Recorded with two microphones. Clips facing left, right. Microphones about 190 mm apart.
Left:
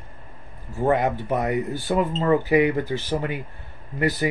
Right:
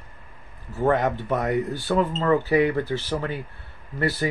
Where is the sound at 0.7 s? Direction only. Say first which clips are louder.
Even; 10° left (ahead or behind).